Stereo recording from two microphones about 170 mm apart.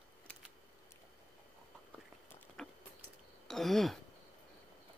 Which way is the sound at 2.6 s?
Centre (ahead or behind).